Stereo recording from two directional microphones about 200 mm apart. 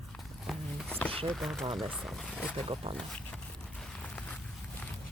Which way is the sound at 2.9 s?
30° right (ahead or behind).